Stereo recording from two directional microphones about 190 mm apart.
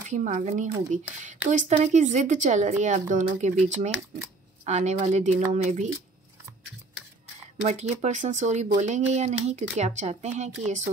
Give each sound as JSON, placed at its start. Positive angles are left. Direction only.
{"t": 0.1, "sound": "speech", "side_deg": -40}
{"t": 7.6, "sound": "speech", "side_deg": -35}